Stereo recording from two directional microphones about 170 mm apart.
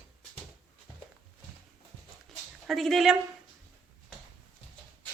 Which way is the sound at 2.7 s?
Centre (ahead or behind).